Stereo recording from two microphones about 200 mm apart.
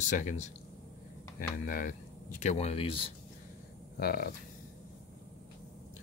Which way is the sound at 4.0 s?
50° left (ahead or behind).